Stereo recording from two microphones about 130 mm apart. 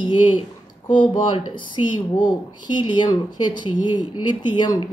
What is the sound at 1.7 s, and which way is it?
A woman's voice, 35° left (ahead or behind).